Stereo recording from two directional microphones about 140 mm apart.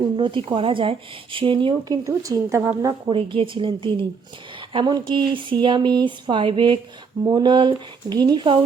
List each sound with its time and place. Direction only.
0.2 s speech: 35° right (ahead or behind)
2.0 s a woman's voice: 25° right (ahead or behind)
3.1 s speech: 40° right (ahead or behind)